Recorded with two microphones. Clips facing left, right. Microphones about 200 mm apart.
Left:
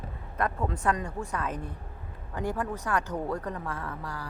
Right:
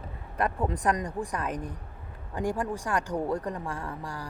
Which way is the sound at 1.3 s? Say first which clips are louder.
Right 1 dB; 15° right (ahead or behind).